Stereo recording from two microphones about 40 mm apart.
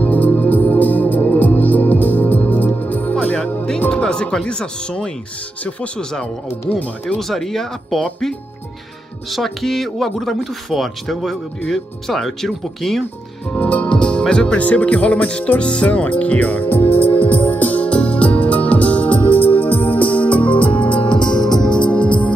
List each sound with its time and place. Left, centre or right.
0.0 s music: left
3.9 s speech: left
7.2 s speech: centre
13.6 s speech: left
13.9 s music: left
14.2 s speech: left
14.6 s speech: left
16.6 s music: left
17.7 s music: left
19.2 s music: left
21.1 s music: centre
21.7 s music: left